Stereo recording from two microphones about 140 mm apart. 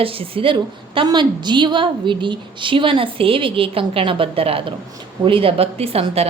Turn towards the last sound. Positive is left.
turn(degrees=-45)  # may be behind; listen again after turning